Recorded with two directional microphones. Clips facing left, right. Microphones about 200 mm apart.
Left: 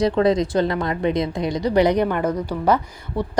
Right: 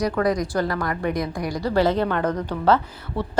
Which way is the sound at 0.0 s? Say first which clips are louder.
Left 4 dB; 25° left (ahead or behind).